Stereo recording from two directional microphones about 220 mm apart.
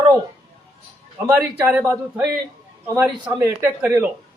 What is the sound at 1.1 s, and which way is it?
A man's voice, 5° right (ahead or behind).